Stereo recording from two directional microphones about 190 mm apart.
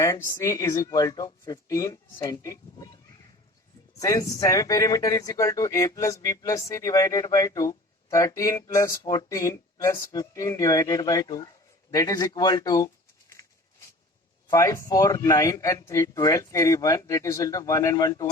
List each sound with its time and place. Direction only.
0.0 s speech: 15° left (ahead or behind)
4.0 s speech: 15° left (ahead or behind)
13.4 s a sound: 20° left (ahead or behind)
14.5 s speech: 15° left (ahead or behind)